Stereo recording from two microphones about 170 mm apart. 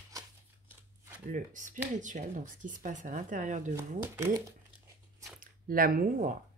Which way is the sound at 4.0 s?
15° right (ahead or behind).